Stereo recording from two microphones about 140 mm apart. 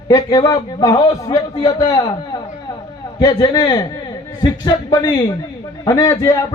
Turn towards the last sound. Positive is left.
turn(degrees=25)  # may be behind; listen again after turning